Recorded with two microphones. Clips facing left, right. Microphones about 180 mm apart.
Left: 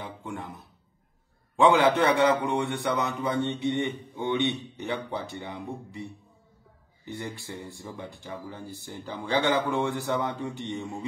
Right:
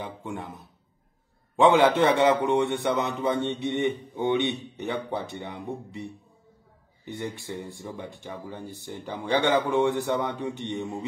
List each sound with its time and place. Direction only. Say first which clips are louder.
0.0 s a man's voice: right 2 dB; 20° right (ahead or behind)